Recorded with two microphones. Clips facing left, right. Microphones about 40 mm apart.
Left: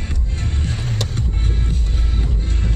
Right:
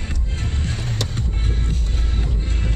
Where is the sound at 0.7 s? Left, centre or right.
Centre.